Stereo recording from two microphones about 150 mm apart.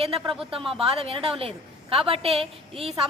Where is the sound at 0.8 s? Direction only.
40° right (ahead or behind).